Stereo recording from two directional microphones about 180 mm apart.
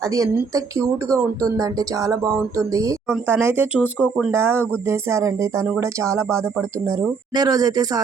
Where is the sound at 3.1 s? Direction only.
10° right (ahead or behind).